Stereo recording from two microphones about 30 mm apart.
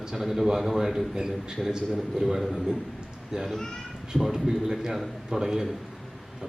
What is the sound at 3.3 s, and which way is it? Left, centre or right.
A man's voice, centre.